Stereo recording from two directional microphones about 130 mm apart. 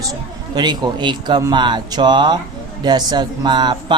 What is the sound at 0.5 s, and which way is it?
Speech, 35° right (ahead or behind).